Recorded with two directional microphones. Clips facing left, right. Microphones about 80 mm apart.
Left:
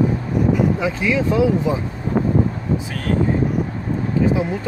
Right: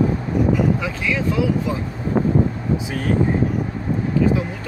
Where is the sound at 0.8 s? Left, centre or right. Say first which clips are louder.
Left 4 dB; left.